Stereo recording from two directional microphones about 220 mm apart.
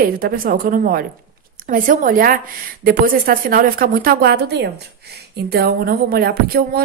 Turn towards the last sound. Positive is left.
turn(degrees=-45)  # may be behind; listen again after turning